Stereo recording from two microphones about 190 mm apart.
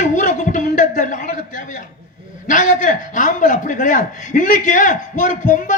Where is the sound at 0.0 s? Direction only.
40° left (ahead or behind).